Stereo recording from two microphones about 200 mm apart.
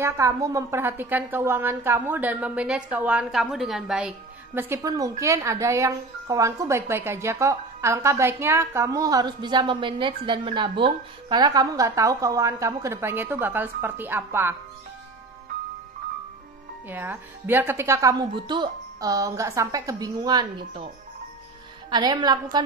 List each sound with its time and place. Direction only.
0.0 s speech: 15° right (ahead or behind)
4.6 s speech: 15° right (ahead or behind)
16.9 s speech: 10° right (ahead or behind)
21.9 s a woman's voice: 20° right (ahead or behind)